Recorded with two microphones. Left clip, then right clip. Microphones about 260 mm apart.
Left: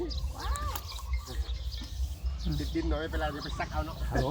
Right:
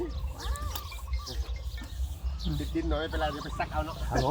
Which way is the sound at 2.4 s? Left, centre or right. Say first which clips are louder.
Right 1 dB; centre.